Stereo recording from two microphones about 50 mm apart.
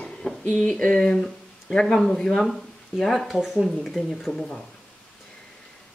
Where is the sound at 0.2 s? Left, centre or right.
Centre.